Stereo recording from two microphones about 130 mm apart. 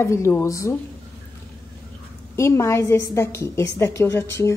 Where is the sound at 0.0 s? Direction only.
20° left (ahead or behind).